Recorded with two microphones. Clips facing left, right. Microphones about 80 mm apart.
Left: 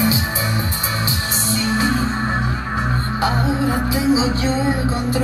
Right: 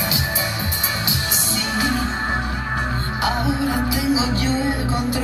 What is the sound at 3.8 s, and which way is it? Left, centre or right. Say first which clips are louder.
Music: left 3 dB; left.